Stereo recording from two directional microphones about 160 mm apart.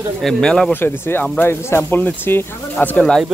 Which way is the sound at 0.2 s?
5° left (ahead or behind).